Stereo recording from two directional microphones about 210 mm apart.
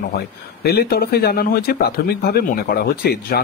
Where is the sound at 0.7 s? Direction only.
50° left (ahead or behind).